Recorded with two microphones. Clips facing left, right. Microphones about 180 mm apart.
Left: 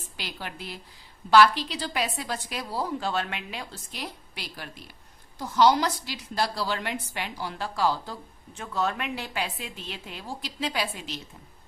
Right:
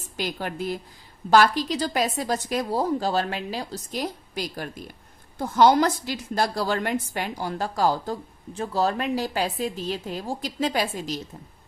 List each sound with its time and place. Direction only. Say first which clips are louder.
0.2 s a woman's voice: right 9 dB; 45° right (ahead or behind)